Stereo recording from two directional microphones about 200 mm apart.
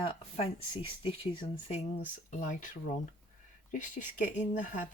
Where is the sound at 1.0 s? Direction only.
25° left (ahead or behind).